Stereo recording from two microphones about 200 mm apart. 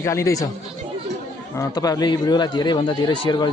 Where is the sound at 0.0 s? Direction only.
15° left (ahead or behind).